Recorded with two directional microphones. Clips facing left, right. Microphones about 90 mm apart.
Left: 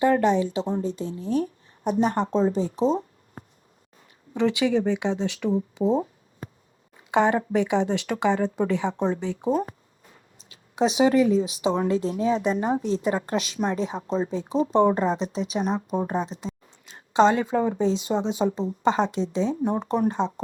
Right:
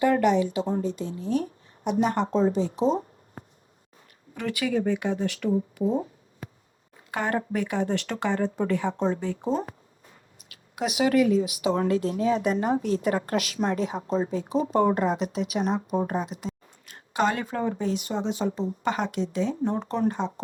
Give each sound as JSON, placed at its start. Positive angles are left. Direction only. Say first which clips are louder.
{"t": 0.0, "sound": "a woman's voice", "louder": "left 1 dB", "side_deg": 30}
{"t": 4.4, "sound": "speech", "louder": "left 5 dB", "side_deg": 20}
{"t": 7.1, "sound": "speech", "louder": "left 6 dB", "side_deg": 20}